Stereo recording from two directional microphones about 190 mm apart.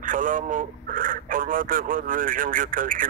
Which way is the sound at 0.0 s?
45° right (ahead or behind).